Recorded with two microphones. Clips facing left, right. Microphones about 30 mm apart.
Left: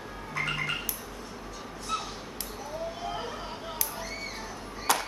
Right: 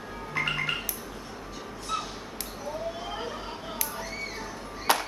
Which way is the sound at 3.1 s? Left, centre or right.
Centre.